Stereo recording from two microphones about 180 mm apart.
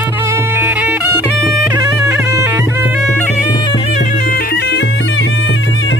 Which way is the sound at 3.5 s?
25° left (ahead or behind).